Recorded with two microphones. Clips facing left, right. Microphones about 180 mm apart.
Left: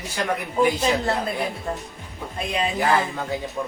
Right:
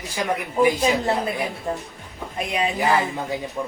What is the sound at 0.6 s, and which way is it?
Speech, 15° right (ahead or behind).